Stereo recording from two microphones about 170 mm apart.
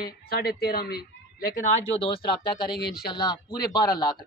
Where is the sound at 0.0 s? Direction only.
65° left (ahead or behind).